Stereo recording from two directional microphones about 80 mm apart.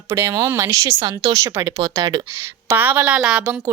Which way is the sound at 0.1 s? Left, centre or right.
Right.